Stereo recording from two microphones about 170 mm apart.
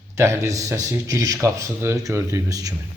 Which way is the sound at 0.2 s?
15° right (ahead or behind).